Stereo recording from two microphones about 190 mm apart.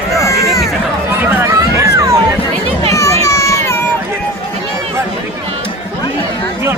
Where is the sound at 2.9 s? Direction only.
15° left (ahead or behind).